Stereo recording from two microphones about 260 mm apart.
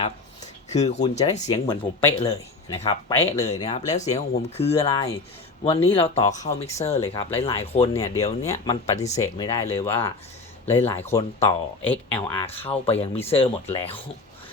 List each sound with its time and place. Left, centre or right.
0.7 s speech: left
9.1 s speech: centre
10.8 s speech: centre
11.1 s speech: left
11.8 s speech: centre
12.2 s speech: left